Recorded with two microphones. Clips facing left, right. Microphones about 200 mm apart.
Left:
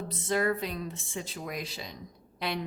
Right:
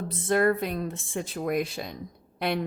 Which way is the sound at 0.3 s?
55° right (ahead or behind).